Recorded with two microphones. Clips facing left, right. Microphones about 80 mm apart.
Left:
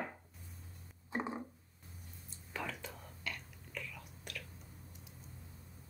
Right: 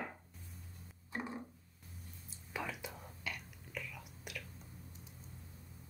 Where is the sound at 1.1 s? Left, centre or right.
Left.